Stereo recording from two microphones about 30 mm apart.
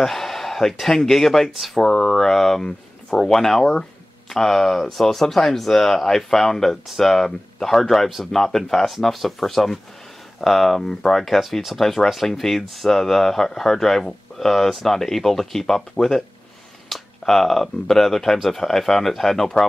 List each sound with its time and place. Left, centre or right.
0.0 s a man's voice: centre